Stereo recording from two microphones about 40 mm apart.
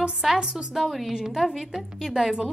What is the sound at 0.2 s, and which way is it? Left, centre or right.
A woman's voice, centre.